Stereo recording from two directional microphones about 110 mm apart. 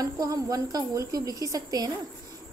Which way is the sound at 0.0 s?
35° right (ahead or behind).